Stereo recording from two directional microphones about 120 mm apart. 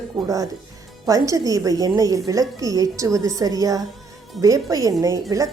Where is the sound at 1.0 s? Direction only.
30° right (ahead or behind).